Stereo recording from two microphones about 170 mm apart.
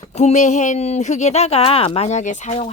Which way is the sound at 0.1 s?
40° left (ahead or behind).